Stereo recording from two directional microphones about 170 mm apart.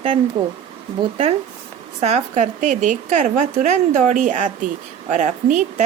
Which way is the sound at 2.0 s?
40° right (ahead or behind).